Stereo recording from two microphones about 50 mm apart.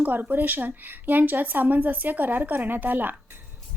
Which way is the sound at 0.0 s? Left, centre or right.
Right.